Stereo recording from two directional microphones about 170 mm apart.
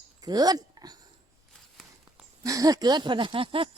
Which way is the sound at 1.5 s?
Centre (ahead or behind).